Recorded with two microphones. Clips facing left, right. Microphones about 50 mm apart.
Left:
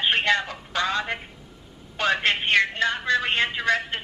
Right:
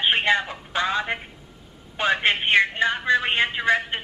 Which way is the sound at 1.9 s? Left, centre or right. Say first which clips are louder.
Right 1 dB; centre.